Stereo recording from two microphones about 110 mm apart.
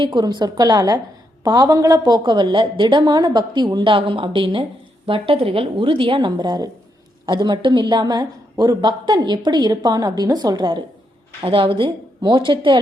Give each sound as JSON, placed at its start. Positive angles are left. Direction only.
{"t": 0.0, "sound": "a woman's voice", "side_deg": -45}